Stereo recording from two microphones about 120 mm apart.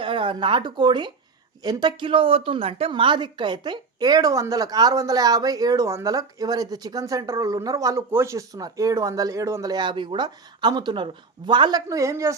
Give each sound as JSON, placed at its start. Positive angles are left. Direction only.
{"t": 0.0, "sound": "a woman's voice", "side_deg": -45}
{"t": 11.9, "sound": "a woman's voice", "side_deg": -25}